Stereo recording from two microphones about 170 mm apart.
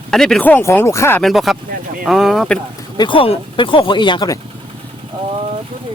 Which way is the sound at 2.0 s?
Centre (ahead or behind).